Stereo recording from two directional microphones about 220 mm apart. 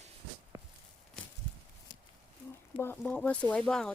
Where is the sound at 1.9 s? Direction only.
20° left (ahead or behind).